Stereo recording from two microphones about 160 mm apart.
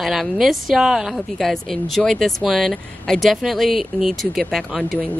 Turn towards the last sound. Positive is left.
turn(degrees=0)  # may be behind; listen again after turning